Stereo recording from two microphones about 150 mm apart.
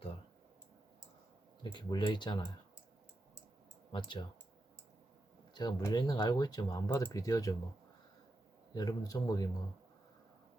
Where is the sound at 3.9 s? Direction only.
35° left (ahead or behind).